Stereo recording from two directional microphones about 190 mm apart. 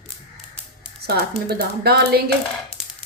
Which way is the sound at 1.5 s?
55° right (ahead or behind).